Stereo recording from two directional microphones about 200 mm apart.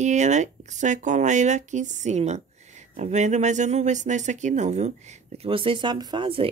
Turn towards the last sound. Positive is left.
turn(degrees=-25)  # may be behind; listen again after turning